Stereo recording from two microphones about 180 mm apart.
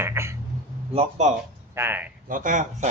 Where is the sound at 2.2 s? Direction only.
50° right (ahead or behind).